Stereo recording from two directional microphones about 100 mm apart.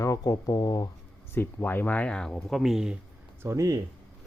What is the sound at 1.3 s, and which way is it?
Speech, 20° left (ahead or behind).